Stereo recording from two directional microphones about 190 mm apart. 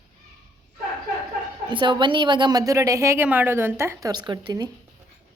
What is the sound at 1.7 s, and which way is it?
A woman's voice, 25° right (ahead or behind).